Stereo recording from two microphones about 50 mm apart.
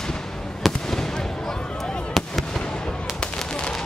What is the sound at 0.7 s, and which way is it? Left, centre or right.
Fireworks, centre.